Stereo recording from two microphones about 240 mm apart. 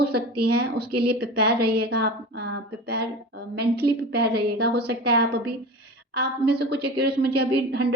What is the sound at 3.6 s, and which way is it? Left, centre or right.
A woman's voice, right.